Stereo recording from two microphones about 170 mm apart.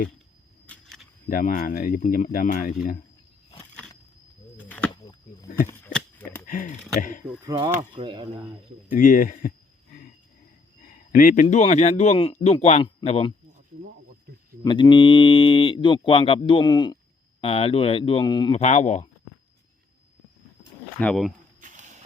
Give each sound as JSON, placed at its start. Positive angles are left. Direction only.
{"t": 0.7, "sound": "a sound", "side_deg": 5}
{"t": 1.3, "sound": "speech", "side_deg": 55}
{"t": 4.5, "sound": "a sound", "side_deg": 10}
{"t": 6.5, "sound": "speech", "side_deg": 55}
{"t": 7.4, "sound": "speech", "side_deg": -25}
{"t": 9.0, "sound": "speech", "side_deg": 55}
{"t": 10.8, "sound": "a sound", "side_deg": 55}
{"t": 11.4, "sound": "speech", "side_deg": 45}
{"t": 14.6, "sound": "speech", "side_deg": 30}
{"t": 18.6, "sound": "speech", "side_deg": 40}
{"t": 21.0, "sound": "speech", "side_deg": 5}
{"t": 21.6, "sound": "a sound", "side_deg": -45}